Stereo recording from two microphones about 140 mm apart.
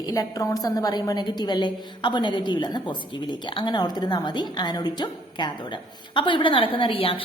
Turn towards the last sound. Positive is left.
turn(degrees=40)  # may be behind; listen again after turning